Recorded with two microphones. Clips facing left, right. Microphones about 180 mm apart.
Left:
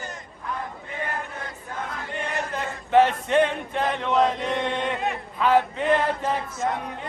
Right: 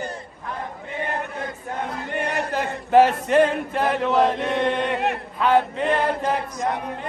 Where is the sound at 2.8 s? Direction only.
40° right (ahead or behind).